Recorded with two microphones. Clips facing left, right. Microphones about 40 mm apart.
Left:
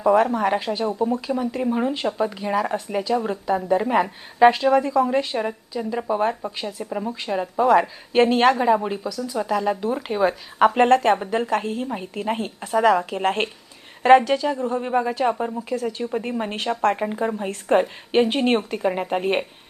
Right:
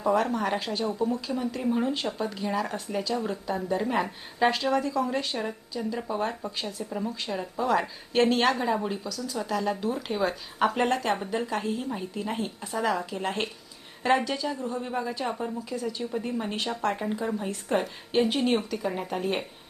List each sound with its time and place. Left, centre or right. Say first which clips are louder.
0.0 s a woman's voice: left 7 dB; left
7.3 s a woman's voice: left 10 dB; left
10.8 s a woman's voice: left 9 dB; left